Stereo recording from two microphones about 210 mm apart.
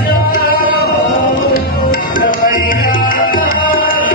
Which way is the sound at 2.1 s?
40° left (ahead or behind).